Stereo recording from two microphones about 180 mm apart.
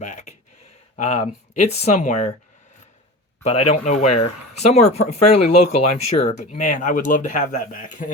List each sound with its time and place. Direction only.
0.0 s a sound: 40° left (ahead or behind)
0.9 s speech: 40° left (ahead or behind)
3.4 s speech: 35° left (ahead or behind)